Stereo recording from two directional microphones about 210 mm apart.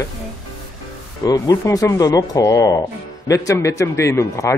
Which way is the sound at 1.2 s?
15° left (ahead or behind).